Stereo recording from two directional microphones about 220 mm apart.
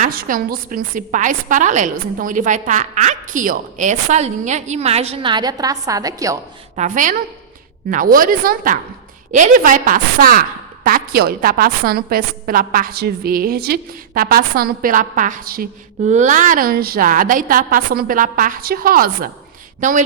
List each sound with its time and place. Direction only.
0.0 s a woman's voice: 40° right (ahead or behind); by 6.4 s 15° right (ahead or behind)
6.7 s a woman's voice: 35° right (ahead or behind)